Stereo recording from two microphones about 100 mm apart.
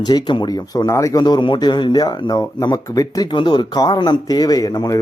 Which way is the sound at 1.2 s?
50° left (ahead or behind).